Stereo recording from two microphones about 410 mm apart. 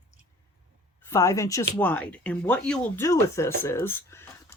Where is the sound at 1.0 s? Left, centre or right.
Centre.